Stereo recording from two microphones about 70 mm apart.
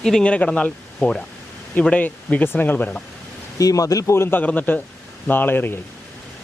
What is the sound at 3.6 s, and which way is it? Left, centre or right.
Speech, left.